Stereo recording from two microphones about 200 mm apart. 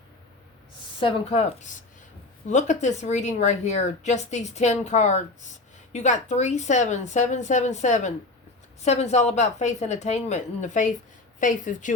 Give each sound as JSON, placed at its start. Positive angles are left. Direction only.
{"t": 0.9, "sound": "speech", "side_deg": 30}